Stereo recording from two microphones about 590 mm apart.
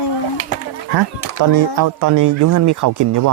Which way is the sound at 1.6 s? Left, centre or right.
Right.